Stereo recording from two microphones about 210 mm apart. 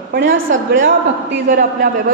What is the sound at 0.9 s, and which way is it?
A man's voice, 45° right (ahead or behind).